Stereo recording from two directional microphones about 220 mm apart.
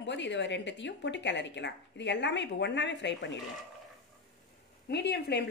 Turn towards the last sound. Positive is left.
turn(degrees=50)  # may be behind; listen again after turning